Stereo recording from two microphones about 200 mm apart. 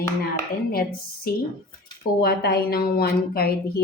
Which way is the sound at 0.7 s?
50° left (ahead or behind).